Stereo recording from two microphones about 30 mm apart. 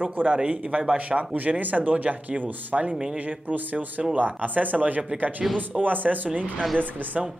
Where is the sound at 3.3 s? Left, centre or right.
Right.